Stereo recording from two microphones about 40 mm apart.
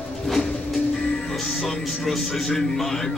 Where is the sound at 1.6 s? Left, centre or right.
Centre.